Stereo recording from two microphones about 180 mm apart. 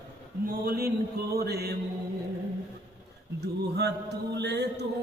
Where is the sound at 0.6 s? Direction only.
55° right (ahead or behind).